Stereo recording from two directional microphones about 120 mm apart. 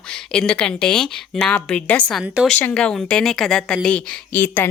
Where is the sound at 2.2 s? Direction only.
10° right (ahead or behind).